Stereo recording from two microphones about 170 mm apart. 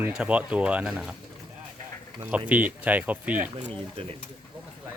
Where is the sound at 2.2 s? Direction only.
10° right (ahead or behind).